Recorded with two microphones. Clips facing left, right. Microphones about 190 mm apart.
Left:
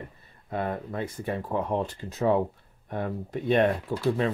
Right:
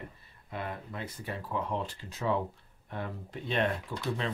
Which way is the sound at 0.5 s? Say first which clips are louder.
Left 8 dB; 50° left (ahead or behind).